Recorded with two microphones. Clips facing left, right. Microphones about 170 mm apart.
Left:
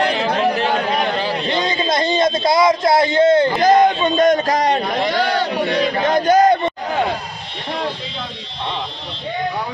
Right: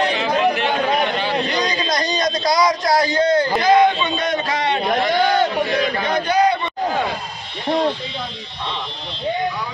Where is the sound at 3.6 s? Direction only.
45° left (ahead or behind).